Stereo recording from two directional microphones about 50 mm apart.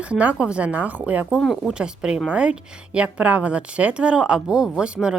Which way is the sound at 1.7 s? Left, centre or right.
Centre.